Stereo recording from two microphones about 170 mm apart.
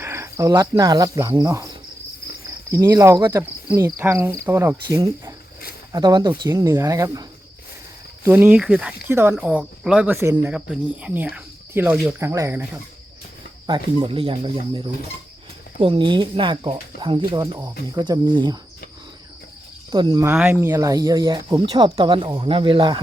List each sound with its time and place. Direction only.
0.0 s speech: 15° right (ahead or behind)
2.6 s cricket: 15° right (ahead or behind)
3.8 s speech: 15° right (ahead or behind)
13.7 s speech: 30° right (ahead or behind)
19.9 s speech: 25° right (ahead or behind)
20.2 s speech: 10° right (ahead or behind); by 23.0 s 30° right (ahead or behind)